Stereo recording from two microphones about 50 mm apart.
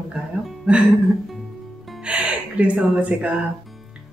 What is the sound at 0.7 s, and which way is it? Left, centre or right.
Speech, right.